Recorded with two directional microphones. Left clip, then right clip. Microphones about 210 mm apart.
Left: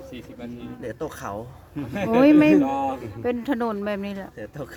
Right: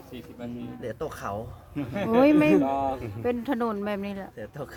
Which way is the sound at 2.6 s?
50° left (ahead or behind).